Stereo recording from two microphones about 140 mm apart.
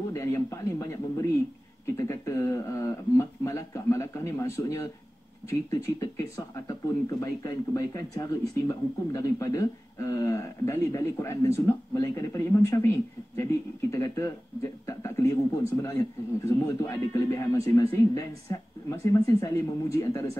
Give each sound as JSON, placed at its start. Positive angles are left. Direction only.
{"t": 0.1, "sound": "speech", "side_deg": 20}
{"t": 2.0, "sound": "a sound", "side_deg": 20}
{"t": 5.5, "sound": "speech", "side_deg": 20}